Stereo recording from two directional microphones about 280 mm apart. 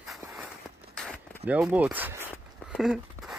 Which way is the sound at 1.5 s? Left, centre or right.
Centre.